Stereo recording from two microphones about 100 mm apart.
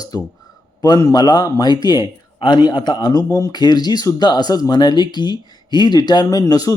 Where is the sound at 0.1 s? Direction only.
40° left (ahead or behind).